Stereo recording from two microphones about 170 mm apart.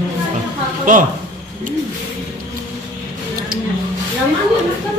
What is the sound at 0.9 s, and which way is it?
Speech, 50° right (ahead or behind).